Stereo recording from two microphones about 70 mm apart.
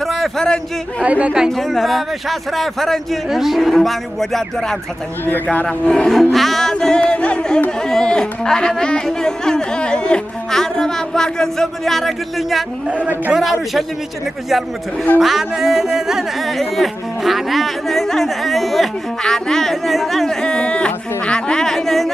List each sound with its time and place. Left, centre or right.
0.0 s a sound: centre
0.4 s speech: centre
1.0 s speech: centre
1.5 s speech: centre
6.3 s music: centre
7.8 s speech: centre
15.1 s speech: centre